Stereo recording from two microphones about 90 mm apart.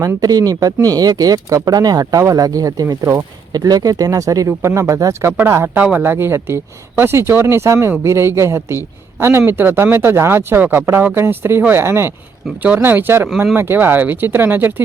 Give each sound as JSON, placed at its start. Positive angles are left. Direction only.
{"t": 0.0, "sound": "speech", "side_deg": -45}
{"t": 3.5, "sound": "speech", "side_deg": -45}